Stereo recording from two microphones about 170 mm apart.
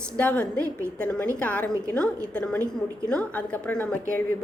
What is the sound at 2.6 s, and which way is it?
Speech, 20° right (ahead or behind).